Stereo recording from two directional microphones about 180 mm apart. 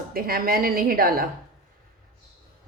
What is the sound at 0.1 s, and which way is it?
A woman's voice, 55° right (ahead or behind).